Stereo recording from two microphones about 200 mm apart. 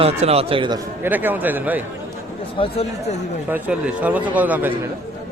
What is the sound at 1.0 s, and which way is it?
Speech, 10° right (ahead or behind).